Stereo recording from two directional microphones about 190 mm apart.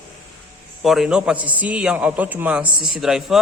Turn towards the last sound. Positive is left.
turn(degrees=0)  # may be behind; listen again after turning